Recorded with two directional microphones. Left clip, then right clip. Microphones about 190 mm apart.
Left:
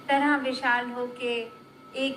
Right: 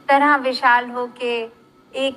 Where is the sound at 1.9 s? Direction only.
45° right (ahead or behind).